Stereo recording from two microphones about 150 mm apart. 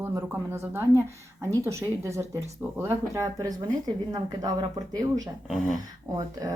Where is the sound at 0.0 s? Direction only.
15° right (ahead or behind).